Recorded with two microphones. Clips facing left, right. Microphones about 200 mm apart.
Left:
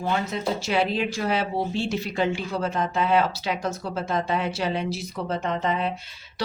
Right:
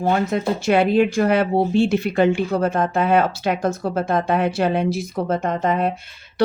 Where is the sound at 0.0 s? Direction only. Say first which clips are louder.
Right 6 dB; 50° right (ahead or behind).